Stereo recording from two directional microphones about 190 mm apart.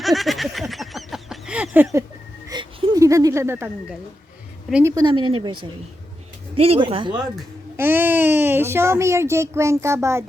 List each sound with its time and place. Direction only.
0.0 s a sound: centre (ahead or behind)
4.7 s speech: 15° right (ahead or behind)
6.6 s speech: 30° right (ahead or behind)
7.8 s a child's voice: 10° right (ahead or behind)